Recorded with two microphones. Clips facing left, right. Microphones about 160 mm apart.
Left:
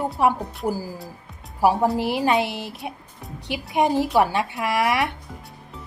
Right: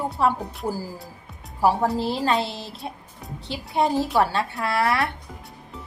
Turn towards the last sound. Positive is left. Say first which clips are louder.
# left 1 dB
turn(degrees=15)  # may be behind; listen again after turning